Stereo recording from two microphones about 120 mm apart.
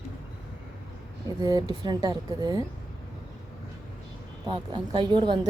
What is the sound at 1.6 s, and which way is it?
A woman's voice, 40° right (ahead or behind).